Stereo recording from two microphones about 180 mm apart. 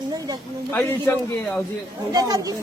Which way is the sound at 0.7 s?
10° left (ahead or behind).